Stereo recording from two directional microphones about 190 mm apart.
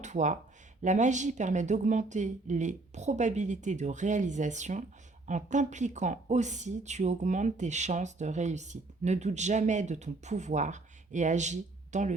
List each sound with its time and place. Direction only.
0.0 s a woman's voice: 40° right (ahead or behind)